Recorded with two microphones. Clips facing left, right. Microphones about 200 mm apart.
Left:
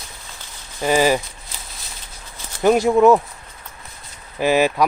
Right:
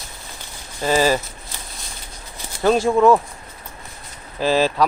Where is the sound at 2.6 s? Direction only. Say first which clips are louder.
Left 2 dB; 15° left (ahead or behind).